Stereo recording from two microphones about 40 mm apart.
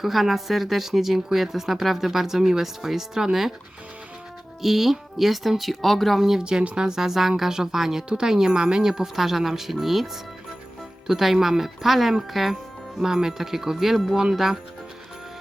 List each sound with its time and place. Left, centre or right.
0.0 s speech: centre
4.6 s speech: centre
6.4 s speech: right
8.9 s speech: centre